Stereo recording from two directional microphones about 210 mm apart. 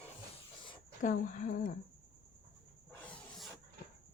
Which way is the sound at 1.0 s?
40° left (ahead or behind).